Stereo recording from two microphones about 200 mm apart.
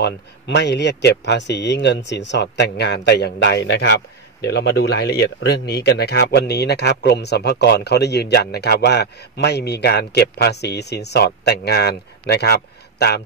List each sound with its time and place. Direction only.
0.0 s a man's voice: 60° left (ahead or behind)